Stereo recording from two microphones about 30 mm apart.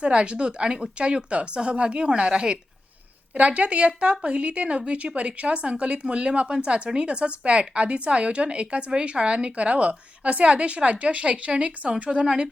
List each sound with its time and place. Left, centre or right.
0.0 s speech: right
3.3 s speech: right